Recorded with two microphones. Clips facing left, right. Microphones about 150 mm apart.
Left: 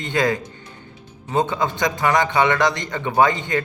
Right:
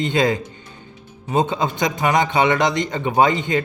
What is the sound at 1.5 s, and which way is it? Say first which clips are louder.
Speech: right 1 dB; 20° right (ahead or behind).